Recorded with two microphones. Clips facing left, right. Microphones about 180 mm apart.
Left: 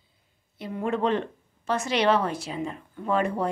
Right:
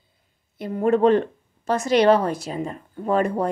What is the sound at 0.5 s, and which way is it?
A woman's voice, 50° right (ahead or behind).